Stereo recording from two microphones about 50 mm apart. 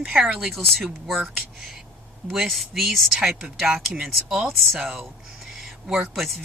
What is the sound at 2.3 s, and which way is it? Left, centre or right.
Speech, centre.